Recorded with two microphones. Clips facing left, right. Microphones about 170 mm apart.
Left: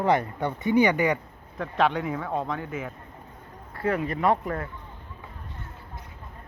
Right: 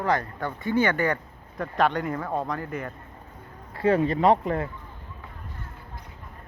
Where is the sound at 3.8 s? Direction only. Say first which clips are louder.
Right 4 dB; 30° right (ahead or behind).